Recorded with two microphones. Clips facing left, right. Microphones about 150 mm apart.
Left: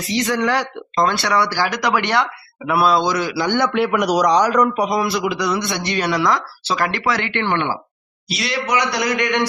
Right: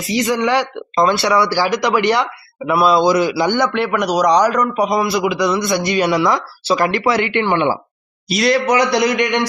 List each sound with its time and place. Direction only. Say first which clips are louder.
0.3 s a man's voice: right 4 dB; 5° right (ahead or behind)
3.5 s a man's voice: right 1 dB; 5° left (ahead or behind); by 7.8 s 15° right (ahead or behind)
8.3 s speech: right 7 dB; 45° right (ahead or behind)
8.9 s a man's voice: right 4 dB; 20° right (ahead or behind)